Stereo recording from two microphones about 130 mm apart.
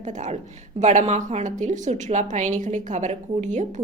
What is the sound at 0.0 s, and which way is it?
A woman's voice, 70° right (ahead or behind).